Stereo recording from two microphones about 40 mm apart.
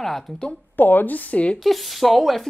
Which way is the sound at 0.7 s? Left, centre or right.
Left.